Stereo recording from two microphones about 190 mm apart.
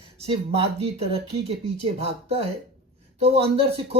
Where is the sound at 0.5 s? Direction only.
30° right (ahead or behind).